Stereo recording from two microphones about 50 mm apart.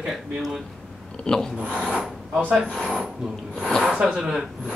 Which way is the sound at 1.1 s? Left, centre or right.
Centre.